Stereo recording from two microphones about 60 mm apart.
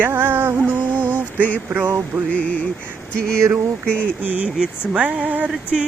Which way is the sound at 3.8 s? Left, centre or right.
Left.